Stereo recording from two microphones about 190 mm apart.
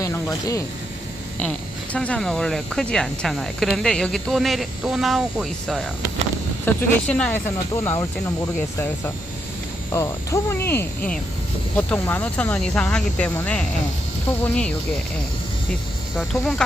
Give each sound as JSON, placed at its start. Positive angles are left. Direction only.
{"t": 0.0, "sound": "speech", "side_deg": 15}
{"t": 1.4, "sound": "speech", "side_deg": 5}
{"t": 6.7, "sound": "speech", "side_deg": 10}
{"t": 16.1, "sound": "speech", "side_deg": 0}